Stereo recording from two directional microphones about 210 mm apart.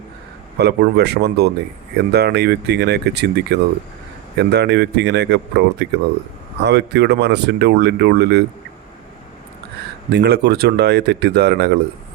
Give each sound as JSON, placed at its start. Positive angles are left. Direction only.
{"t": 0.5, "sound": "speech", "side_deg": -50}
{"t": 10.1, "sound": "speech", "side_deg": -50}